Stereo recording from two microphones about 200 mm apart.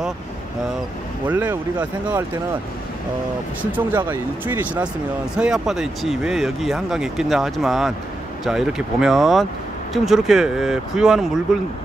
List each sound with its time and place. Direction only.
1.2 s speech: 10° right (ahead or behind)
4.1 s speech: 10° right (ahead or behind)